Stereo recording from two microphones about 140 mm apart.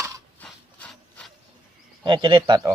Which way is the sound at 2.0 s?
35° right (ahead or behind).